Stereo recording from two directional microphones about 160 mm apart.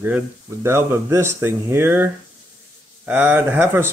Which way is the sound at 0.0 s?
15° right (ahead or behind).